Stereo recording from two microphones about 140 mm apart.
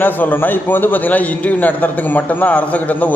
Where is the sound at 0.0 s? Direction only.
15° left (ahead or behind).